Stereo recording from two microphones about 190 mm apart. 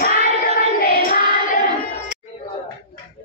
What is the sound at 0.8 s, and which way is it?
Music, 45° left (ahead or behind).